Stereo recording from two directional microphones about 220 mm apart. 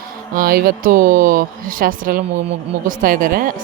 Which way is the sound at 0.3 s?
40° right (ahead or behind).